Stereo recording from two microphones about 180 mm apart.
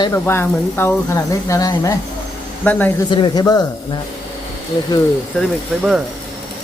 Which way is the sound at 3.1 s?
25° left (ahead or behind).